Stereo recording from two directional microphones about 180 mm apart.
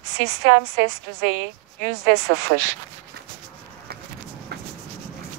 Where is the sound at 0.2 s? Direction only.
65° right (ahead or behind).